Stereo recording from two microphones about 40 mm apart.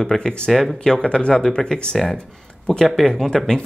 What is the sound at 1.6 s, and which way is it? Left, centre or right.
Speech, centre.